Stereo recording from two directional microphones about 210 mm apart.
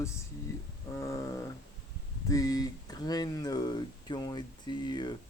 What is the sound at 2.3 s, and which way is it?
Speech, 15° left (ahead or behind).